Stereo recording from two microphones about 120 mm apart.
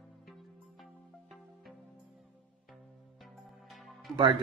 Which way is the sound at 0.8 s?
Centre (ahead or behind).